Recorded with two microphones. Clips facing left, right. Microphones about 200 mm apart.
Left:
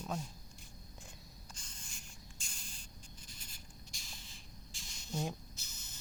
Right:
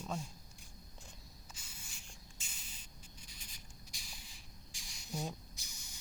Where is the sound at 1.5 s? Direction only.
5° right (ahead or behind).